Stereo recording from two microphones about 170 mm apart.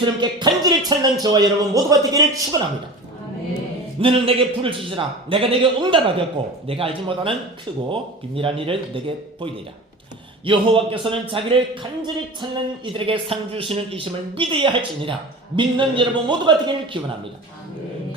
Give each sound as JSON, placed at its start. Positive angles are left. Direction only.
{"t": 0.0, "sound": "a man's voice", "side_deg": -25}
{"t": 4.0, "sound": "a man's voice", "side_deg": -35}